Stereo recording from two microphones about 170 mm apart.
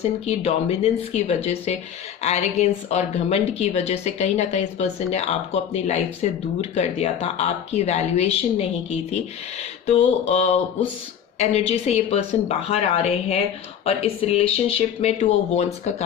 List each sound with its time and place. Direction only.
0.0 s speech: 40° left (ahead or behind)